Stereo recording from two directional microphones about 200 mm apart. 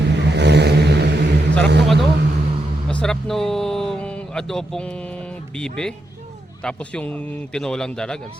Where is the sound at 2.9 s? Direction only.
5° left (ahead or behind).